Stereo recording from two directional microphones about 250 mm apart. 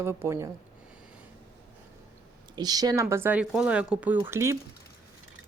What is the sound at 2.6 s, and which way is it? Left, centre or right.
Speech, centre.